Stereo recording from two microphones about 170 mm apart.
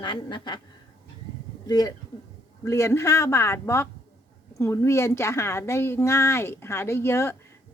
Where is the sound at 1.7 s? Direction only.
25° left (ahead or behind).